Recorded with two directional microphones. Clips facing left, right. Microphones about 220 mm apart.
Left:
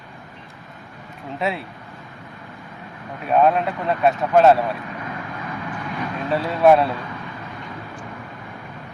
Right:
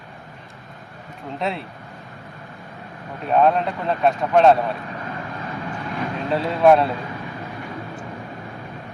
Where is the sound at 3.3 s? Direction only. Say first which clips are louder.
Even; 5° left (ahead or behind).